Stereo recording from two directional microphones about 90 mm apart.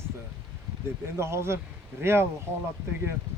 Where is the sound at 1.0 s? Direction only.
30° right (ahead or behind).